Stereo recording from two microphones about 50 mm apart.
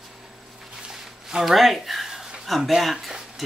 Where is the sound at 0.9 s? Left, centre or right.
Centre.